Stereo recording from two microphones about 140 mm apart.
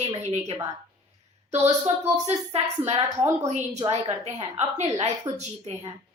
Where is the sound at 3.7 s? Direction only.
35° right (ahead or behind).